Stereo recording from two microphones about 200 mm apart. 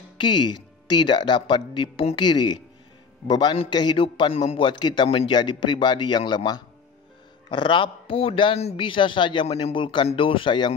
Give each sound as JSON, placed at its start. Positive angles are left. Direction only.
{"t": 0.2, "sound": "a man's voice", "side_deg": 25}